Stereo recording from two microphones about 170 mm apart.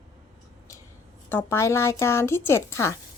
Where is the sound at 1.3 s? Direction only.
15° left (ahead or behind).